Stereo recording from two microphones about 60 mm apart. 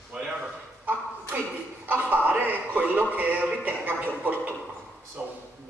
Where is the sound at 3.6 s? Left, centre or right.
Right.